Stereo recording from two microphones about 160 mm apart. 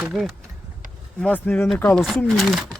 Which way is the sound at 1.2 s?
10° left (ahead or behind).